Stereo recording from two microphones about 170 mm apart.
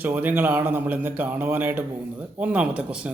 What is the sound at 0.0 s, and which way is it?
Speech, 10° right (ahead or behind).